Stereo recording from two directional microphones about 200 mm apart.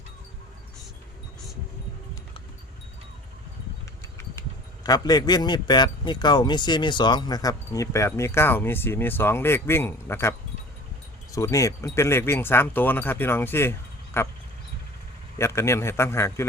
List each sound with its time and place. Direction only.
4.8 s a man's voice: 20° left (ahead or behind)
15.4 s a man's voice: 15° left (ahead or behind)